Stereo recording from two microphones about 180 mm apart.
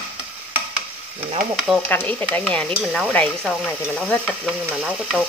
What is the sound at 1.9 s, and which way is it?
Speech, 10° left (ahead or behind).